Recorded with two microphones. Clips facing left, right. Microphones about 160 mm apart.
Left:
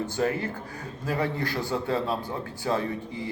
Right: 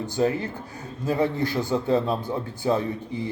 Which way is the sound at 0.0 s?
20° right (ahead or behind).